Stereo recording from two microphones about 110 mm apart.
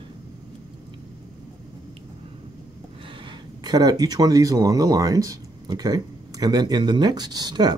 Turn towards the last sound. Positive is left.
turn(degrees=-40)  # may be behind; listen again after turning